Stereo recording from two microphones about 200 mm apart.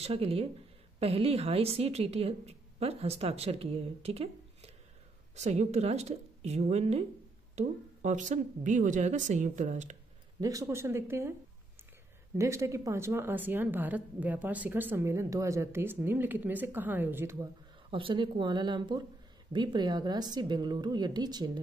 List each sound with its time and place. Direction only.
0.0 s a woman's voice: 30° right (ahead or behind)
10.4 s a woman's voice: 15° right (ahead or behind)
12.4 s a woman's voice: 15° right (ahead or behind)
17.9 s a woman's voice: 25° right (ahead or behind)